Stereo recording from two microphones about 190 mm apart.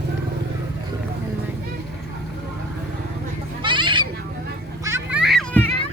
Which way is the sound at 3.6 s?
25° right (ahead or behind).